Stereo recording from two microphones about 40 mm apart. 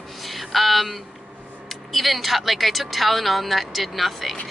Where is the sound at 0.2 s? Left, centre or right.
Centre.